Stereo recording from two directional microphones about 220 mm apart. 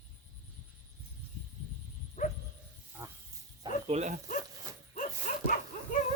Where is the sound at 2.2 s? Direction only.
35° left (ahead or behind).